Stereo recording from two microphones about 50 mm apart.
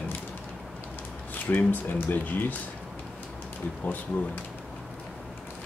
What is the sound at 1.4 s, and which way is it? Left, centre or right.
Speech, left.